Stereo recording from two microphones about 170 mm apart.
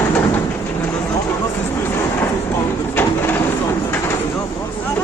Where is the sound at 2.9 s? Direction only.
10° left (ahead or behind).